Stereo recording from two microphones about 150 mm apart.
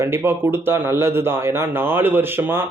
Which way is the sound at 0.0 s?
15° right (ahead or behind).